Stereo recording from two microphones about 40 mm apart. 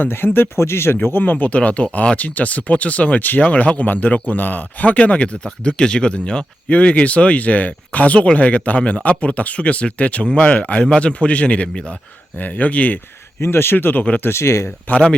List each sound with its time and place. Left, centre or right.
0.5 s speech: left
1.2 s speech: left
1.5 s speech: left
3.4 s speech: left
12.4 s speech: left
13.4 s speech: left
13.7 s speech: left
14.2 s speech: left
14.9 s speech: left